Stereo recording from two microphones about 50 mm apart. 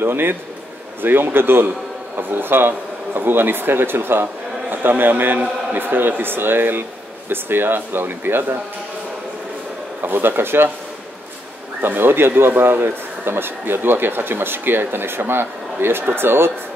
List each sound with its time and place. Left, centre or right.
0.0 s speech: right
10.0 s speech: right
11.8 s speech: right